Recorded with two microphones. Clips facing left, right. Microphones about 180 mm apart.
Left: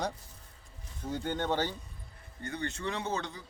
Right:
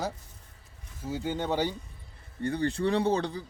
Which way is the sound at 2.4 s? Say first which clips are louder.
Right 9 dB; 35° right (ahead or behind).